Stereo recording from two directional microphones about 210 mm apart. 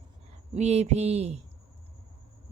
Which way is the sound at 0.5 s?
30° right (ahead or behind).